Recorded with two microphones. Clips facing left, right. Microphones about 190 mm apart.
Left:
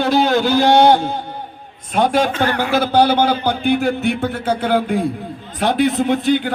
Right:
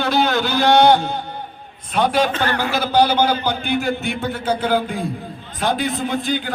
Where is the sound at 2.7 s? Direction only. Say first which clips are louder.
Left 3 dB; 55° left (ahead or behind).